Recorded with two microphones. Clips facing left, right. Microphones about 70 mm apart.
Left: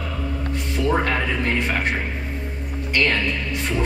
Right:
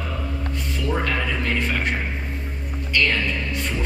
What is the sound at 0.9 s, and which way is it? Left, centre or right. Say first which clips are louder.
Speech: left 1 dB; centre.